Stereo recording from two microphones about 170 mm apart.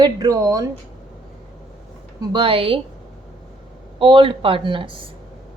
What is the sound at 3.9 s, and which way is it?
Speech, 30° right (ahead or behind).